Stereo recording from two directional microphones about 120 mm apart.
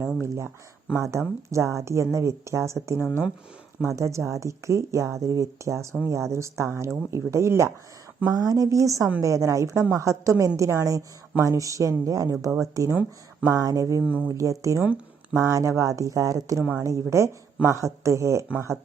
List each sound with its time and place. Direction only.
0.2 s speech: 20° right (ahead or behind)
3.8 s speech: 25° right (ahead or behind)
14.0 s speech: 15° right (ahead or behind)
14.3 s speech: 30° right (ahead or behind)
14.8 s a sound: 10° right (ahead or behind)
15.4 s speech: 25° right (ahead or behind)